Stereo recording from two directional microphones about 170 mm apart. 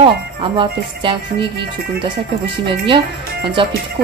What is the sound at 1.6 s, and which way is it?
Speech, 65° right (ahead or behind).